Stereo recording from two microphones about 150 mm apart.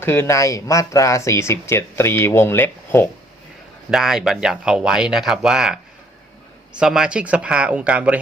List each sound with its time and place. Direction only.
0.0 s speech: 15° left (ahead or behind)
3.9 s speech: 5° right (ahead or behind)